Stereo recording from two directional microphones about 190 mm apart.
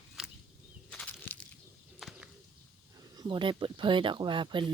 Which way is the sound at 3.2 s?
25° right (ahead or behind).